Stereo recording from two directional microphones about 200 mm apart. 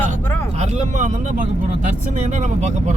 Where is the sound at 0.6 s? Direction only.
35° right (ahead or behind).